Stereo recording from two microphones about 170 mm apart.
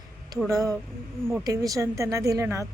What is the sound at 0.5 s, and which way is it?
A woman's voice, 20° right (ahead or behind).